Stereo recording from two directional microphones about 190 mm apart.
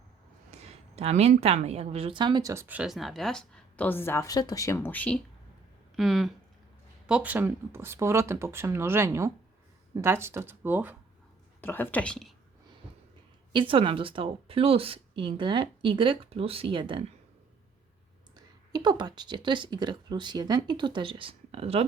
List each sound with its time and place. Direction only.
0.5 s a woman's voice: 35° right (ahead or behind); by 10.9 s 10° right (ahead or behind)
11.6 s speech: 10° left (ahead or behind)
13.5 s speech: 25° right (ahead or behind)
18.3 s speech: 20° right (ahead or behind)